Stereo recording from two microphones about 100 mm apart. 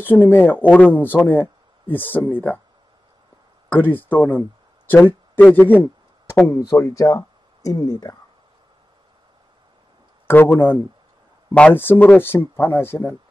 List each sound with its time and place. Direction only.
0.0 s speech: 20° left (ahead or behind)
3.6 s speech: 20° left (ahead or behind); by 8.2 s 35° left (ahead or behind)
10.2 s speech: 20° left (ahead or behind)